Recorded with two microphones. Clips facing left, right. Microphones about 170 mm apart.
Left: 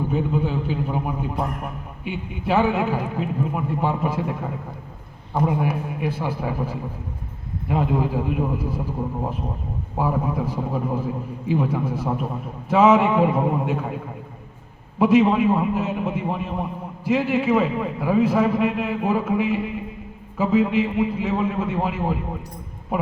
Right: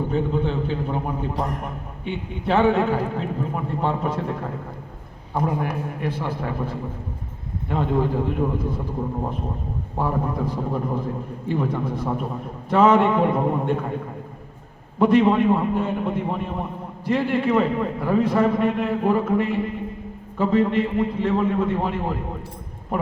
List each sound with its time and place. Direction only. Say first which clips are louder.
0.1 s a man's voice: even; 5° left (ahead or behind)
10.0 s a man's voice: left 1 dB; 5° left (ahead or behind)